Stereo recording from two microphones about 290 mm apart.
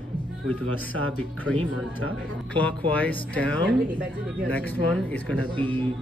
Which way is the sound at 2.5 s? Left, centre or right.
Centre.